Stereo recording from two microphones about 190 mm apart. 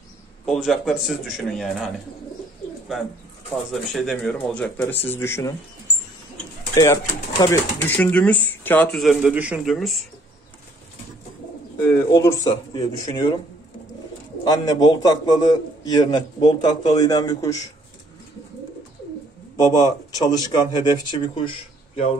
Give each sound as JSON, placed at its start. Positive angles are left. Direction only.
{"t": 0.5, "sound": "a man's voice", "side_deg": 0}
{"t": 3.7, "sound": "speech", "side_deg": 0}
{"t": 6.7, "sound": "speech", "side_deg": 20}
{"t": 11.8, "sound": "speech", "side_deg": 15}
{"t": 14.4, "sound": "speech", "side_deg": 20}
{"t": 19.5, "sound": "speech", "side_deg": 20}